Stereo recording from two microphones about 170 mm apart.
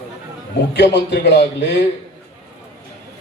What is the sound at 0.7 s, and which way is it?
A man's voice, 85° left.